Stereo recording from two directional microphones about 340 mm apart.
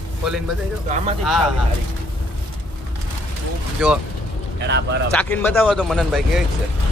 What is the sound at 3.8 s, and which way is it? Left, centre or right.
Speech, centre.